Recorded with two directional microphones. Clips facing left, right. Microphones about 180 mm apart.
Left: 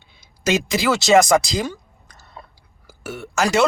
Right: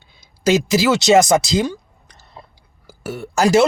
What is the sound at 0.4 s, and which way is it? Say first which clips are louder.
Speech: right 4 dB; 25° right (ahead or behind).